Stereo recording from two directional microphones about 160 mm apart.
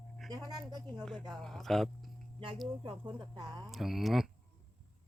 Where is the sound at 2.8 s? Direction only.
30° right (ahead or behind).